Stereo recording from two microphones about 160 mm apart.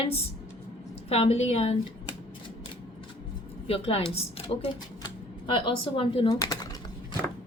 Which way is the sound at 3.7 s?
35° left (ahead or behind).